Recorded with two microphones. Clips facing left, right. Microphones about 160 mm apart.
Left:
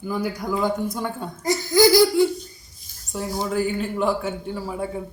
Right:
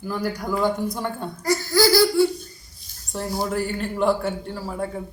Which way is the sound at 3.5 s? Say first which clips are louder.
Left 2 dB; centre (ahead or behind).